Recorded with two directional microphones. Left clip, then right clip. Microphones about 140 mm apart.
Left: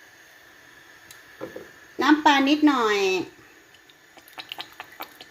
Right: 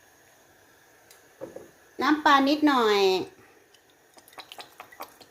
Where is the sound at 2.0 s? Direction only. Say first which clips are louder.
Left 2 dB; 15° left (ahead or behind).